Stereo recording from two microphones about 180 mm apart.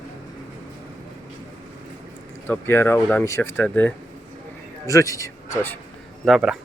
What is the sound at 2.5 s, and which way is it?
Speech, 10° left (ahead or behind).